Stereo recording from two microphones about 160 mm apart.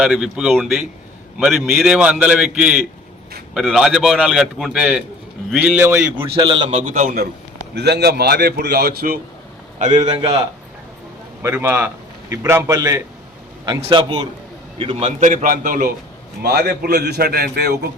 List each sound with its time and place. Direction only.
0.0 s a man's voice: 5° right (ahead or behind)
6.4 s a man's voice: 30° right (ahead or behind)
6.8 s a man's voice: 65° right (ahead or behind)
7.8 s a man's voice: 90° right
9.7 s a man's voice: 50° right (ahead or behind)
10.1 s a man's voice: 25° right (ahead or behind)
11.4 s a man's voice: 15° right (ahead or behind); by 16.0 s 60° right (ahead or behind)
16.4 s a man's voice: 80° right